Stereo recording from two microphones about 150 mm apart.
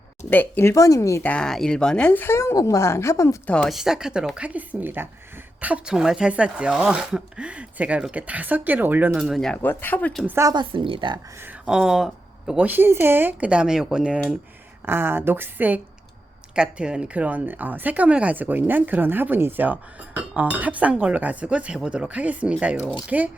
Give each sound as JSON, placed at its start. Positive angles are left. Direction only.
{"t": 0.3, "sound": "speech", "side_deg": 15}
{"t": 3.5, "sound": "a woman's voice", "side_deg": 5}
{"t": 9.6, "sound": "speech", "side_deg": 15}
{"t": 10.2, "sound": "a woman's voice", "side_deg": -15}
{"t": 10.5, "sound": "speech", "side_deg": -30}
{"t": 11.6, "sound": "a woman's voice", "side_deg": -5}